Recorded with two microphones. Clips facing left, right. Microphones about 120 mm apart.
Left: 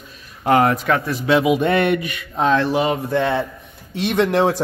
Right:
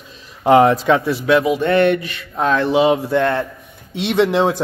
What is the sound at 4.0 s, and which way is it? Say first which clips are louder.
Speech: right 1 dB; 15° right (ahead or behind).